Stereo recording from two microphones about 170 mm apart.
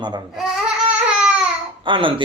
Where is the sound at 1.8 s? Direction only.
30° right (ahead or behind).